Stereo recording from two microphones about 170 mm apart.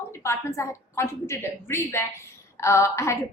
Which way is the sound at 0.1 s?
15° left (ahead or behind).